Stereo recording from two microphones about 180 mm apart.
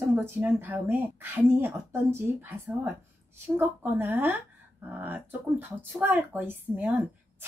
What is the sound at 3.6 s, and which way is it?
Speech, 10° right (ahead or behind).